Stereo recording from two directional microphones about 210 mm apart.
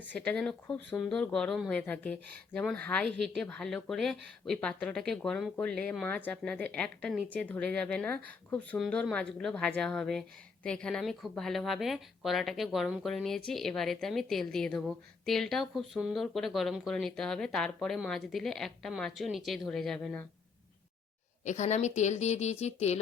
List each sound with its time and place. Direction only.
0.3 s a woman's voice: 5° left (ahead or behind)
21.4 s speech: 35° left (ahead or behind)